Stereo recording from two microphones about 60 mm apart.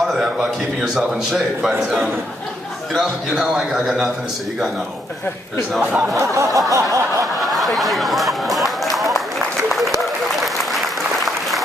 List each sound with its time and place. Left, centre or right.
0.0 s a sound: centre
0.9 s a man's voice: centre
5.7 s a man's voice: centre
6.0 s a sound: right
7.4 s chatter: centre
9.7 s applause: centre